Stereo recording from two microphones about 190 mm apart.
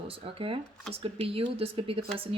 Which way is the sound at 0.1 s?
30° right (ahead or behind).